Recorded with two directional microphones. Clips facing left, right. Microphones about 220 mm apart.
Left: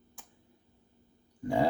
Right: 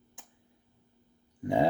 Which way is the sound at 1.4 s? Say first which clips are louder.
Right 2 dB; 20° right (ahead or behind).